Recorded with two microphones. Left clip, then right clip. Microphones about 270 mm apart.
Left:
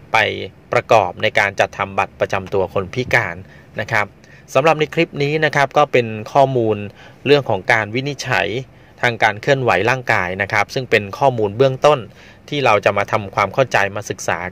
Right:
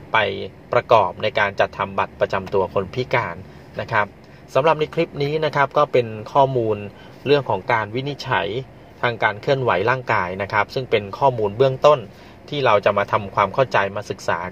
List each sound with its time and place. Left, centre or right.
0.1 s speech: left